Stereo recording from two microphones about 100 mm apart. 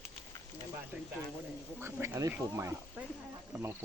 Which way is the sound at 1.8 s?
30° right (ahead or behind).